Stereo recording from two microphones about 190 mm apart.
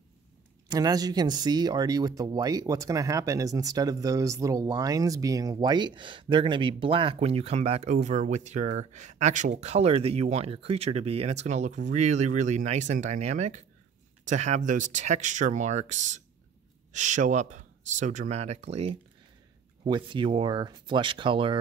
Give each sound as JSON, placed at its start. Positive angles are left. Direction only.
{"t": 0.7, "sound": "speech", "side_deg": -20}